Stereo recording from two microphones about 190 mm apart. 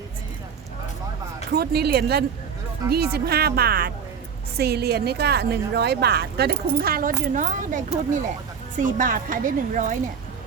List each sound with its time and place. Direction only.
1.5 s a woman's voice: 55° right (ahead or behind)